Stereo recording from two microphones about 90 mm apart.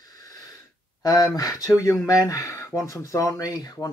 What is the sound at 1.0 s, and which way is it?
Speech, 45° left (ahead or behind).